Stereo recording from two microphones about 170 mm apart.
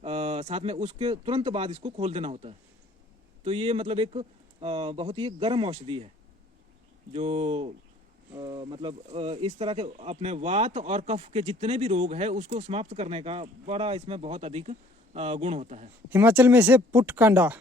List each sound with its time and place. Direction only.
0.0 s speech: 40° right (ahead or behind)
7.1 s speech: 35° right (ahead or behind)
16.0 s speech: 10° right (ahead or behind)